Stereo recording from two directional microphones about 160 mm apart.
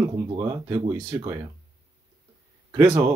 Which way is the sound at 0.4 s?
20° right (ahead or behind).